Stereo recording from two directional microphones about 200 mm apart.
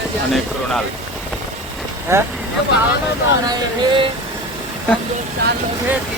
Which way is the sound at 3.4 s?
20° right (ahead or behind).